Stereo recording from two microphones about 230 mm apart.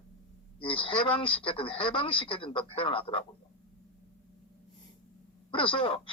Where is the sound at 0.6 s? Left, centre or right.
Left.